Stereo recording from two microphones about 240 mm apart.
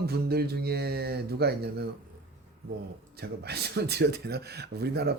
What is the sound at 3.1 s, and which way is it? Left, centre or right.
A man's voice, right.